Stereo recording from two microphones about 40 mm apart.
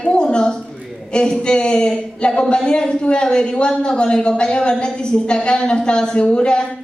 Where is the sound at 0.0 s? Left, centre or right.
Left.